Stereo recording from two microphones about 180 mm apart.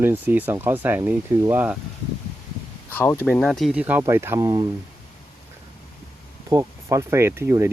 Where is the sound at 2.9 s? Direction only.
15° left (ahead or behind).